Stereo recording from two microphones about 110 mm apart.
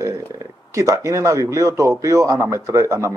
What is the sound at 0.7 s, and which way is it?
Speech, 30° right (ahead or behind).